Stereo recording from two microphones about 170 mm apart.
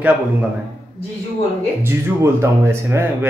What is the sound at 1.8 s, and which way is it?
Speech, 15° right (ahead or behind).